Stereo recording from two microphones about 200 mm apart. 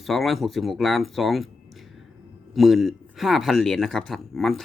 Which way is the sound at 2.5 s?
Centre (ahead or behind).